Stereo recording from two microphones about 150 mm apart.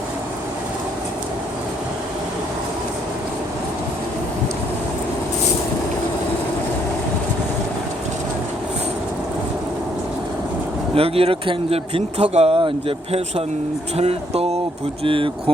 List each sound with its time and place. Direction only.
10.9 s speech: 40° right (ahead or behind)